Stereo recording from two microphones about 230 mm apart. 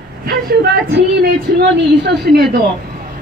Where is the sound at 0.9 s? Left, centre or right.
Right.